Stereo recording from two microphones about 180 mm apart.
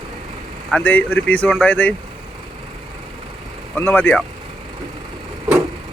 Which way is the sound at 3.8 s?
10° left (ahead or behind).